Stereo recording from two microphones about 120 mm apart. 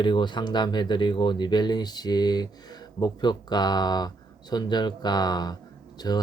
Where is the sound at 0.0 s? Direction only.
40° left (ahead or behind).